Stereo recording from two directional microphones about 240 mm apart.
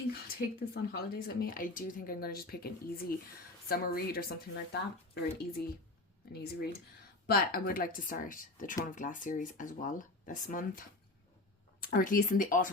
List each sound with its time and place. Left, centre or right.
0.3 s speech: left
7.3 s speech: left